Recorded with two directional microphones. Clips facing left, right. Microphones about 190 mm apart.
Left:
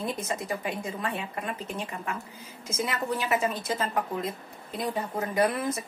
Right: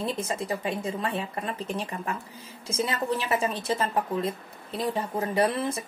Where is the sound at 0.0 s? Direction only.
30° right (ahead or behind).